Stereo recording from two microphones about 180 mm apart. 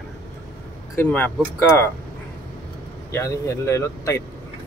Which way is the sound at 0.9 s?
10° left (ahead or behind).